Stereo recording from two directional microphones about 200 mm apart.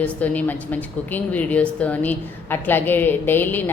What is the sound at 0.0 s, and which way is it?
A woman's voice, 10° left (ahead or behind).